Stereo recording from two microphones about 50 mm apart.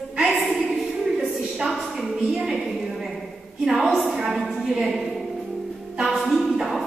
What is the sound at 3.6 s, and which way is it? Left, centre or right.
Speech, centre.